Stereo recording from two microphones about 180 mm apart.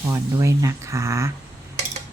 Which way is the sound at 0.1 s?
15° right (ahead or behind).